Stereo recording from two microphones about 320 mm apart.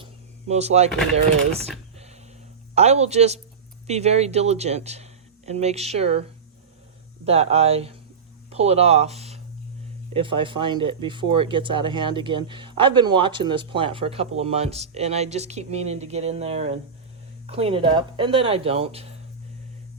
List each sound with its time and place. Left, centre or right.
0.0 s a sound: centre
2.7 s speech: centre
7.3 s speech: centre